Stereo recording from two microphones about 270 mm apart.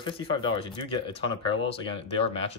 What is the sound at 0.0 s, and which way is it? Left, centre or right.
Speech, centre.